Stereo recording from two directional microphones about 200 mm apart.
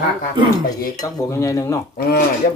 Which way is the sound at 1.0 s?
15° left (ahead or behind).